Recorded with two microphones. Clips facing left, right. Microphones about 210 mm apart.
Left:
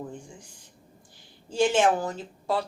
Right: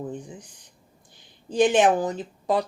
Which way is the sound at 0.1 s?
20° right (ahead or behind).